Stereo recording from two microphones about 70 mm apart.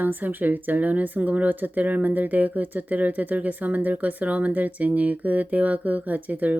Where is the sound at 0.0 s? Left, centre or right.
Right.